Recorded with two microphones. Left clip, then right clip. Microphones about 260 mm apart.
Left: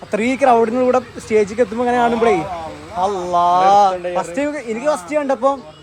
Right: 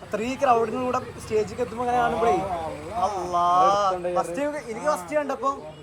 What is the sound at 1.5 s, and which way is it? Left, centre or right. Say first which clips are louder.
Speech: left 8 dB; left.